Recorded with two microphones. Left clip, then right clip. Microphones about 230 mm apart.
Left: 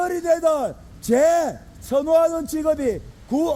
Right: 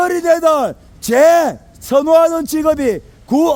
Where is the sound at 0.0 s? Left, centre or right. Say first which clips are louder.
Right 7 dB; right.